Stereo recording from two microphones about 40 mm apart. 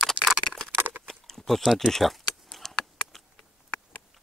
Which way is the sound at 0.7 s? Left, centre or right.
Right.